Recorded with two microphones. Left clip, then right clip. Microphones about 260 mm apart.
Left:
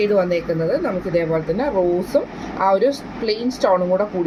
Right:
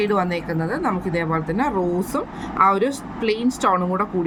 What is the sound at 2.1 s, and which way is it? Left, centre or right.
Speech, right.